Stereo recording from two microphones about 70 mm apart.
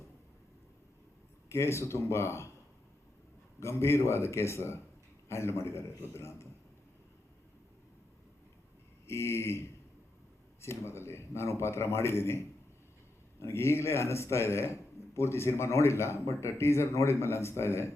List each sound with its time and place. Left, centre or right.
1.5 s a man's voice: left
3.6 s a man's voice: left
9.0 s a man's voice: left